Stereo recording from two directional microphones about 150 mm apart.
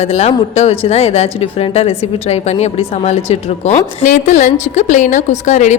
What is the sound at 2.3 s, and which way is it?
A woman's voice, 45° left (ahead or behind).